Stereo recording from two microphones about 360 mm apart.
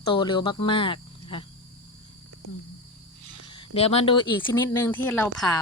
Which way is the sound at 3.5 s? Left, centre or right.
Centre.